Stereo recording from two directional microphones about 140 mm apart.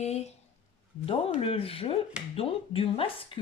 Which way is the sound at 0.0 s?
50° left (ahead or behind).